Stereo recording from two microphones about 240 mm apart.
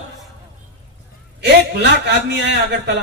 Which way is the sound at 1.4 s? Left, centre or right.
Right.